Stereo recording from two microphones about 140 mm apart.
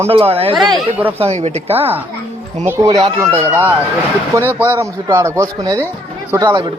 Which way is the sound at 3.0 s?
30° right (ahead or behind).